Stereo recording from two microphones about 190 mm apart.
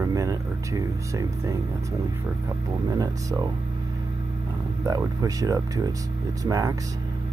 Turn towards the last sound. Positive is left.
turn(degrees=-15)  # may be behind; listen again after turning